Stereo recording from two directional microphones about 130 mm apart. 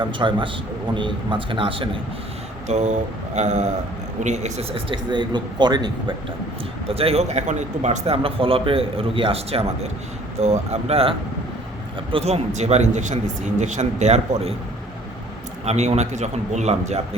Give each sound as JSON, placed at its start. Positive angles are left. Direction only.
{"t": 0.0, "sound": "speech", "side_deg": -40}
{"t": 2.6, "sound": "a man's voice", "side_deg": -65}
{"t": 4.7, "sound": "speech", "side_deg": -40}
{"t": 6.8, "sound": "a man's voice", "side_deg": -50}
{"t": 12.1, "sound": "a man's voice", "side_deg": -55}
{"t": 15.6, "sound": "a man's voice", "side_deg": -55}